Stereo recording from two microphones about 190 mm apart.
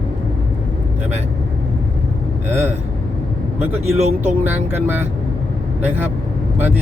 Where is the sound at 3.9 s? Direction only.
35° right (ahead or behind).